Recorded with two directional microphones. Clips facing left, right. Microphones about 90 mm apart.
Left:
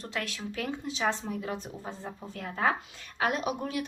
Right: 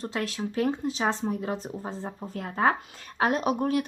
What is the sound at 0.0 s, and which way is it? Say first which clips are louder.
Speech: right 5 dB; 35° right (ahead or behind).